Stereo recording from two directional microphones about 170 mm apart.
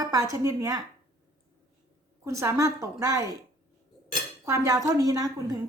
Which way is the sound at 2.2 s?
15° right (ahead or behind).